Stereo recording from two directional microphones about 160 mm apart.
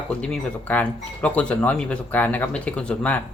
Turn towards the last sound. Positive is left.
turn(degrees=10)  # may be behind; listen again after turning